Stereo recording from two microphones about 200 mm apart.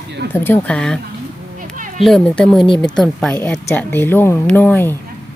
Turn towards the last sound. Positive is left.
turn(degrees=10)  # may be behind; listen again after turning